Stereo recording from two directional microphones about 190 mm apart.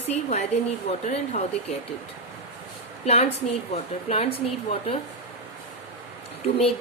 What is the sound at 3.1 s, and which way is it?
Speech, 35° left (ahead or behind).